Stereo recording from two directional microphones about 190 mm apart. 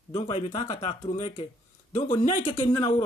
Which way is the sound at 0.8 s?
35° left (ahead or behind).